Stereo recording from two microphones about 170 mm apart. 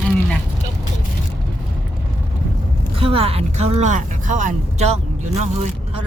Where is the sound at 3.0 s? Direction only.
35° right (ahead or behind).